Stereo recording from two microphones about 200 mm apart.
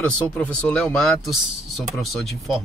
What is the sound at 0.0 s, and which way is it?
A man's voice, 5° left (ahead or behind).